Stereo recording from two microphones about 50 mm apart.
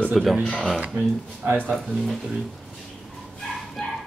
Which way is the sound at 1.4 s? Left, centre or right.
Right.